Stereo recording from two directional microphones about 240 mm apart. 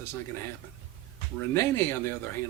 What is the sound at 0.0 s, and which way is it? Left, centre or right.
Speech, centre.